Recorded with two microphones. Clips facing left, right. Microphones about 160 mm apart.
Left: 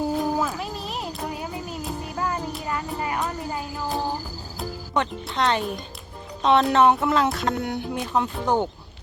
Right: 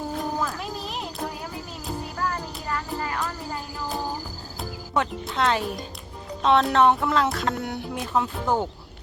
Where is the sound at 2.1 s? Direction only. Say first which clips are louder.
Left 2 dB; 20° left (ahead or behind).